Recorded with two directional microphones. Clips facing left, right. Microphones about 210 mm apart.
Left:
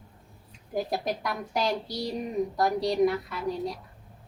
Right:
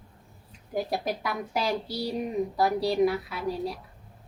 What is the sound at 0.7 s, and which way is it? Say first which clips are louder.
A woman's voice: even; centre (ahead or behind).